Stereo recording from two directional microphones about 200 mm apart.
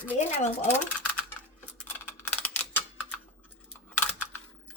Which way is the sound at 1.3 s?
5° left (ahead or behind).